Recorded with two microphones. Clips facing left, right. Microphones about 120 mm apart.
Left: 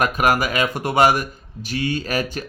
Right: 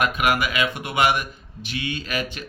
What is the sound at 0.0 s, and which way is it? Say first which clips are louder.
Speech: left 3 dB; 40° left (ahead or behind).